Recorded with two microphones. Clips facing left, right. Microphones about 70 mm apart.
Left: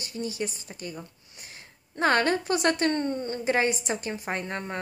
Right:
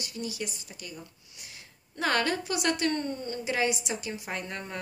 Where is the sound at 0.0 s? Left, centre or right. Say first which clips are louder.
Left 4 dB; left.